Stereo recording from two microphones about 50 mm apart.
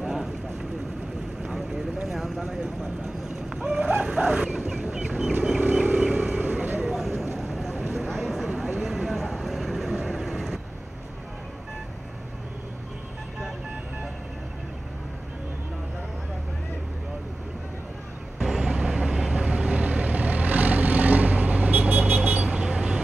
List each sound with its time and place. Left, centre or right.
0.0 s vehicle: centre
2.0 s vehicle: centre
2.4 s speech: centre
3.5 s a sound: centre
4.0 s dog: centre
5.6 s vehicle: right
6.8 s vehicle: centre
7.3 s a sound: centre
8.5 s vehicle: centre
18.4 s vehicle: centre